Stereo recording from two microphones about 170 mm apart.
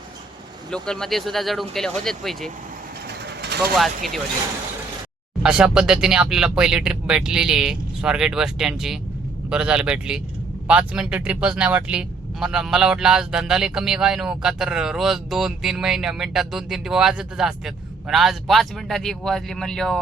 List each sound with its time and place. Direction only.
0.7 s speech: 5° left (ahead or behind)
3.2 s vehicle: 80° right
3.8 s speech: centre (ahead or behind)
5.4 s speech: 5° right (ahead or behind)